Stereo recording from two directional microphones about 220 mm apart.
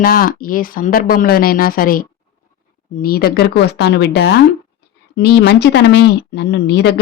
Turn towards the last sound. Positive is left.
turn(degrees=50)  # may be behind; listen again after turning